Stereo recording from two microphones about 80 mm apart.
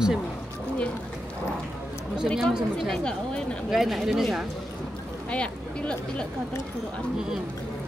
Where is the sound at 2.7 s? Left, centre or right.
Centre.